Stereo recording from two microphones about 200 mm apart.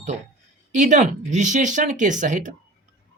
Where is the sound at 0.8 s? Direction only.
40° right (ahead or behind).